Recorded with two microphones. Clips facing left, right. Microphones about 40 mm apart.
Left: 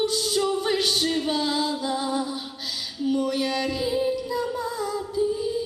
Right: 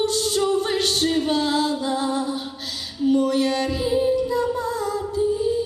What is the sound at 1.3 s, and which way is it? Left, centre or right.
Singing, right.